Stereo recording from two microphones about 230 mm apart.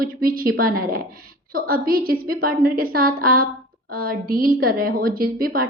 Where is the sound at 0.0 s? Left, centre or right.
Right.